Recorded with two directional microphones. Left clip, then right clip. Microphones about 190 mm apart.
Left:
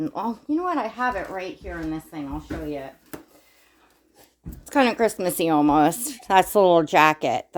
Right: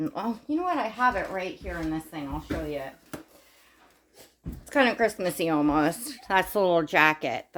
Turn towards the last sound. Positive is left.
turn(degrees=35)  # may be behind; listen again after turning